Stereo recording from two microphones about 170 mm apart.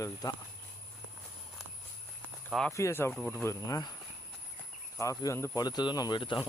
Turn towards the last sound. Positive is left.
turn(degrees=25)  # may be behind; listen again after turning